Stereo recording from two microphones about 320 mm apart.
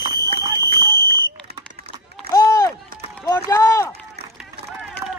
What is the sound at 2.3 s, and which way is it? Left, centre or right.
Run, centre.